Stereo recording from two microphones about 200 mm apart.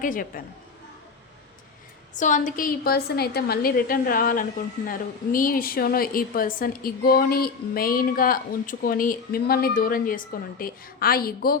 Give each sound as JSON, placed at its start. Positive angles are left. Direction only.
{"t": 0.0, "sound": "a woman's voice", "side_deg": 45}
{"t": 2.1, "sound": "a woman's voice", "side_deg": 40}